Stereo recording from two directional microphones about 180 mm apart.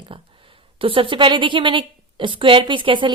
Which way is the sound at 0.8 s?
30° right (ahead or behind).